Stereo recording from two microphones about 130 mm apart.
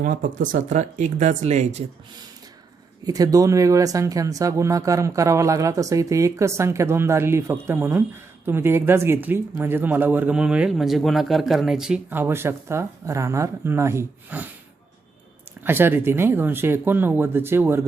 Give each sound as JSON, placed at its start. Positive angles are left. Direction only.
{"t": 0.0, "sound": "speech", "side_deg": -90}
{"t": 3.0, "sound": "speech", "side_deg": -30}
{"t": 12.1, "sound": "speech", "side_deg": -20}
{"t": 15.6, "sound": "speech", "side_deg": -15}